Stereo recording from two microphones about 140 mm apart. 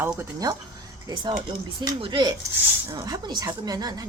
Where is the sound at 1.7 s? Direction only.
35° right (ahead or behind).